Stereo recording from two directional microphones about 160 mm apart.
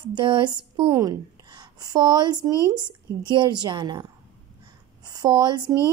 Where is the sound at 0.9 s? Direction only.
20° right (ahead or behind).